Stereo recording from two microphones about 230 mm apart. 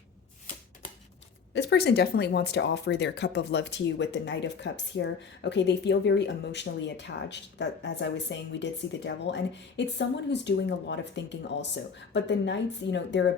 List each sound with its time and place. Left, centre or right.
1.5 s speech: left